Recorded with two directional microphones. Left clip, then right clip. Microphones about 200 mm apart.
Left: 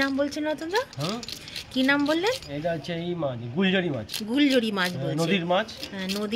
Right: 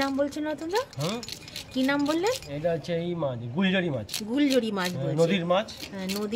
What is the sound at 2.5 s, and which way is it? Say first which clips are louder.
Speech: right 1 dB; 35° right (ahead or behind).